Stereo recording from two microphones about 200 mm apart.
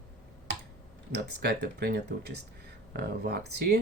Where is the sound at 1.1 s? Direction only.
55° right (ahead or behind).